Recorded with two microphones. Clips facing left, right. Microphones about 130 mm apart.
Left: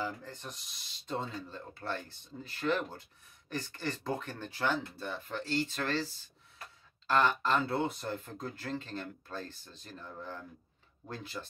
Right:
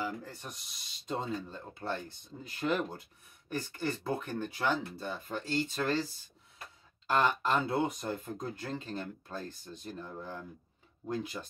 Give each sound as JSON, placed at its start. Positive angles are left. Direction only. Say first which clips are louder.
{"t": 0.0, "sound": "speech", "louder": "right 1 dB", "side_deg": -10}